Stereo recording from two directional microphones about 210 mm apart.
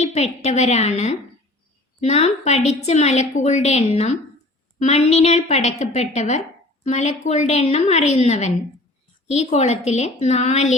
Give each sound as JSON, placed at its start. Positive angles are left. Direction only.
{"t": 0.0, "sound": "a woman's voice", "side_deg": 30}